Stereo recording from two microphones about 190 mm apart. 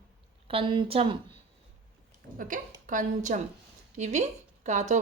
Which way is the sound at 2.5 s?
45° right (ahead or behind).